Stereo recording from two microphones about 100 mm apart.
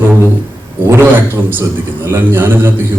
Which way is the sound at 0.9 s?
20° right (ahead or behind).